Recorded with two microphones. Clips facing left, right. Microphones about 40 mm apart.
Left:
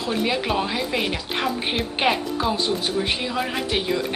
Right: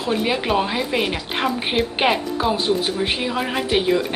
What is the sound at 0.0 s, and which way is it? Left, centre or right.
A woman's voice, centre.